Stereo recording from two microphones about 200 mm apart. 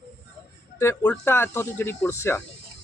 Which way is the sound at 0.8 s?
10° left (ahead or behind).